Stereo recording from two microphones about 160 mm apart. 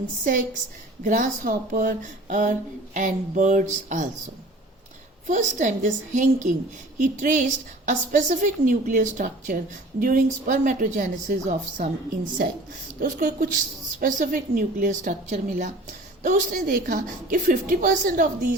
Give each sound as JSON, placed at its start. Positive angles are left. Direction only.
{"t": 1.0, "sound": "speech", "side_deg": -55}
{"t": 5.2, "sound": "a woman's voice", "side_deg": -50}